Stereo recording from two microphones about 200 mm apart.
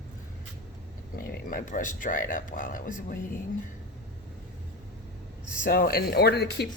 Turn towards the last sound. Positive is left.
turn(degrees=55)  # may be behind; listen again after turning